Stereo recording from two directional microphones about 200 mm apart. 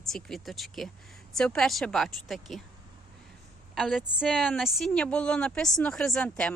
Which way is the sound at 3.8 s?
Centre (ahead or behind).